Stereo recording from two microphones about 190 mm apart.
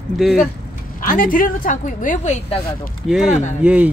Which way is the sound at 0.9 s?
45° left (ahead or behind).